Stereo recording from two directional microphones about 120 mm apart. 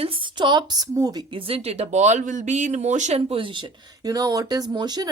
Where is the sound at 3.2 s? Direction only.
45° right (ahead or behind).